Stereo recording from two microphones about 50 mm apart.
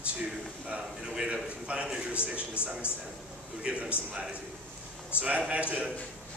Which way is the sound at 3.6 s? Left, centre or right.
Right.